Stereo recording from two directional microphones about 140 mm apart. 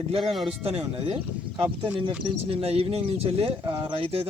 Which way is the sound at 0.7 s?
45° right (ahead or behind).